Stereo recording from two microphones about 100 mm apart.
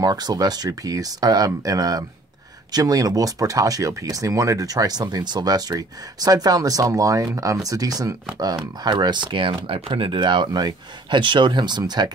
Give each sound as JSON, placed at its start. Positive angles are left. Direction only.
{"t": 0.0, "sound": "speech", "side_deg": -40}